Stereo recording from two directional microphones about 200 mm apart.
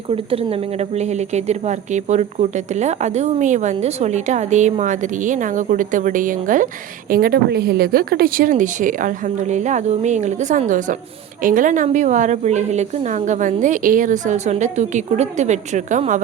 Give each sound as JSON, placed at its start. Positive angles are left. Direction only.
{"t": 0.1, "sound": "speech", "side_deg": -30}